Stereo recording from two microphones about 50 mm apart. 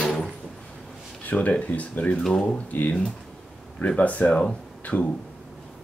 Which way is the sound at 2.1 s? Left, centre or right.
Centre.